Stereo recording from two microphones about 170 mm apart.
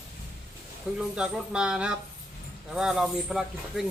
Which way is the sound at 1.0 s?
5° right (ahead or behind).